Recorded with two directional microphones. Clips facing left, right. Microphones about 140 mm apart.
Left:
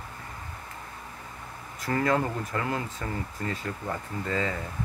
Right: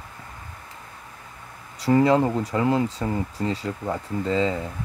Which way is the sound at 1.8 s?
15° right (ahead or behind).